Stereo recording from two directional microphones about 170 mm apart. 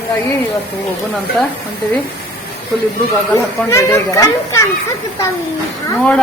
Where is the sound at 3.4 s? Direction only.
15° left (ahead or behind).